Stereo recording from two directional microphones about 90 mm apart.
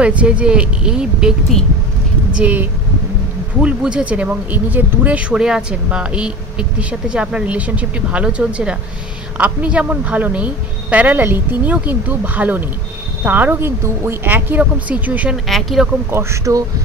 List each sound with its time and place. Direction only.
0.0 s speech: 15° right (ahead or behind)
2.3 s speech: 15° right (ahead or behind)
15.3 s speech: centre (ahead or behind)
16.1 s speech: 30° right (ahead or behind)